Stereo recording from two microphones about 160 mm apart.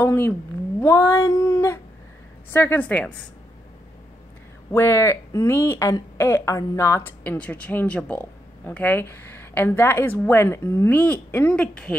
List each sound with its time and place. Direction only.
0.0 s speech: 15° left (ahead or behind)
0.7 s a sound: 15° left (ahead or behind)
2.5 s speech: 15° left (ahead or behind)
4.6 s speech: 15° left (ahead or behind)